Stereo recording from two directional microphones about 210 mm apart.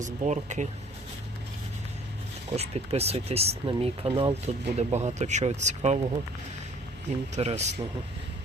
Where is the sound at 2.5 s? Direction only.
30° right (ahead or behind).